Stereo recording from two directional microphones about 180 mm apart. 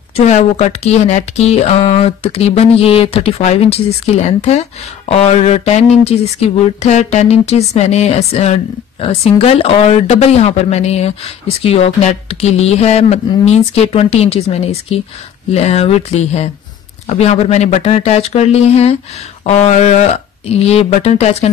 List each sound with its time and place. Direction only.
0.1 s speech: 35° left (ahead or behind)